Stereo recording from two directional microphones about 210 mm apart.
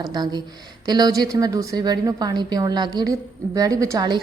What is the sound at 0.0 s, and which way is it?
A woman's voice, 20° right (ahead or behind).